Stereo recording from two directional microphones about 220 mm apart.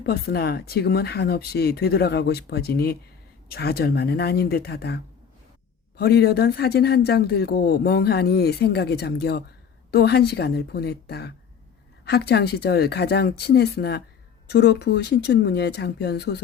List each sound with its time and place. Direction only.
0.0 s speech: 45° left (ahead or behind)
6.0 s speech: 45° left (ahead or behind)